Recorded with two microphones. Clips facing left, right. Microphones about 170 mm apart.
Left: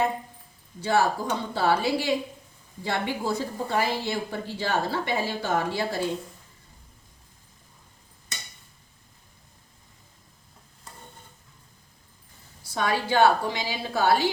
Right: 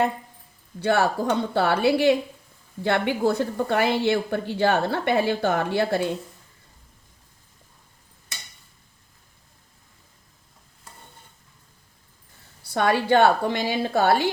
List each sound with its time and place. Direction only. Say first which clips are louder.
0.8 s speech: right 2 dB; 65° right (ahead or behind)
12.6 s speech: right 5 dB; 60° right (ahead or behind)